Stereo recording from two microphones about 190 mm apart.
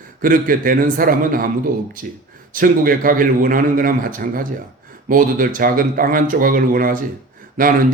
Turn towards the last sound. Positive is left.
turn(degrees=-45)  # may be behind; listen again after turning